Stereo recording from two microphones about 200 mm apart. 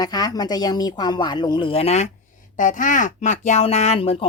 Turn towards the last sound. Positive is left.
turn(degrees=30)  # may be behind; listen again after turning